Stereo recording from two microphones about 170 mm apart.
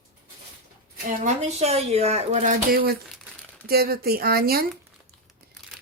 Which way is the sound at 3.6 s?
65° right (ahead or behind).